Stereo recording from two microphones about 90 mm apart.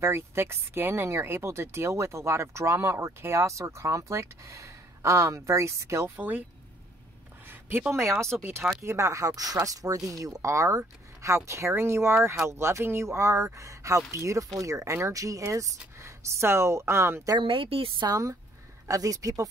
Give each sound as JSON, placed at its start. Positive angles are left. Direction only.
{"t": 0.0, "sound": "speech", "side_deg": -30}
{"t": 6.1, "sound": "speech", "side_deg": -20}
{"t": 7.9, "sound": "speech", "side_deg": -30}
{"t": 17.4, "sound": "a woman's voice", "side_deg": -80}
{"t": 18.0, "sound": "speech", "side_deg": -45}